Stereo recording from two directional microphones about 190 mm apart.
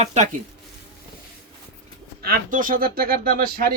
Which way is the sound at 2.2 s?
50° right (ahead or behind).